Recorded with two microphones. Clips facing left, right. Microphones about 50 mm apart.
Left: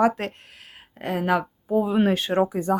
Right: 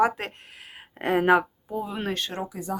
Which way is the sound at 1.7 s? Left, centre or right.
Centre.